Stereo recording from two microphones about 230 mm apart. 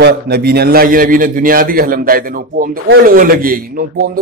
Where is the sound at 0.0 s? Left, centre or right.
Right.